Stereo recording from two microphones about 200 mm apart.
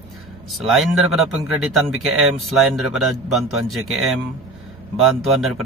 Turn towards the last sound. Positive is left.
turn(degrees=0)  # may be behind; listen again after turning